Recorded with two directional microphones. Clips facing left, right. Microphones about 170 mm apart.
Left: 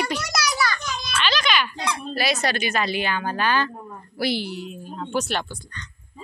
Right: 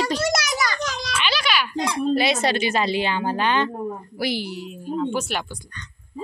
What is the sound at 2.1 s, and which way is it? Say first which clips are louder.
A woman's voice: right 4 dB; 25° right (ahead or behind).